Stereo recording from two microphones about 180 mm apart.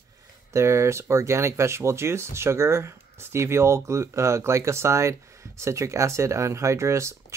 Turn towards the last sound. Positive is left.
turn(degrees=-15)  # may be behind; listen again after turning